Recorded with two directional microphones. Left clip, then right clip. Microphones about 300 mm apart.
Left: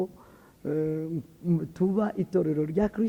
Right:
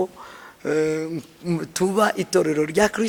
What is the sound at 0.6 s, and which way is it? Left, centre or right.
A man's voice, centre.